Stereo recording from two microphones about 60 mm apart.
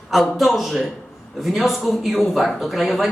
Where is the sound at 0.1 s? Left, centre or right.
Centre.